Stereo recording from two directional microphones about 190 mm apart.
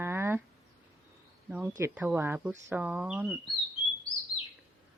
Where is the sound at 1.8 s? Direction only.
15° right (ahead or behind).